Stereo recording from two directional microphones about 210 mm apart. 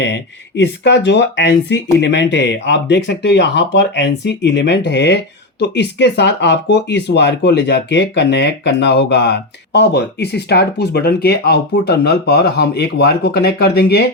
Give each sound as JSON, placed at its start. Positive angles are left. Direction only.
{"t": 0.0, "sound": "speech", "side_deg": 55}